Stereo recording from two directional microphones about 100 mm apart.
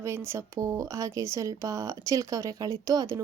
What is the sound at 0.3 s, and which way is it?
A woman's voice, 30° right (ahead or behind).